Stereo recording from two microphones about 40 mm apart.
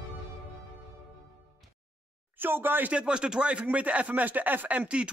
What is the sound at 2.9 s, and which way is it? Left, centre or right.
Speech, right.